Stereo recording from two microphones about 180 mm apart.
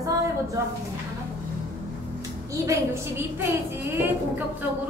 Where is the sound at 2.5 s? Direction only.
15° right (ahead or behind).